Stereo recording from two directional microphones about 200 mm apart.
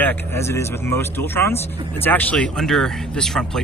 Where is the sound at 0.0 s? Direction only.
10° left (ahead or behind).